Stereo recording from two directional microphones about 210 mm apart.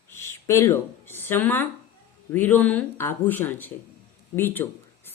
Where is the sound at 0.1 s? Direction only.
10° left (ahead or behind).